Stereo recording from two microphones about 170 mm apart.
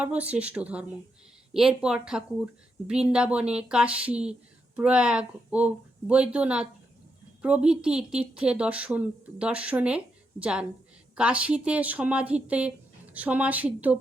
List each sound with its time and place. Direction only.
0.0 s a woman's voice: 10° right (ahead or behind)